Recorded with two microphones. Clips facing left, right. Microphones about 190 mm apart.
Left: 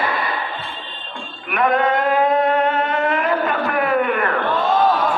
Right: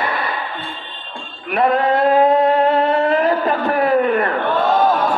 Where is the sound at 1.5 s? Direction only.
30° right (ahead or behind).